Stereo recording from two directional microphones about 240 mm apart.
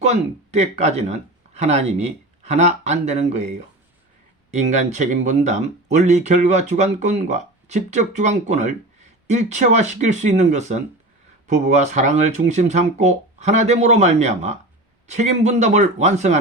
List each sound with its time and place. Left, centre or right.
0.0 s speech: right